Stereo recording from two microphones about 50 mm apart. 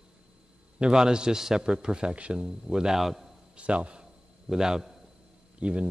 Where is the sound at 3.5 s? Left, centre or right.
Right.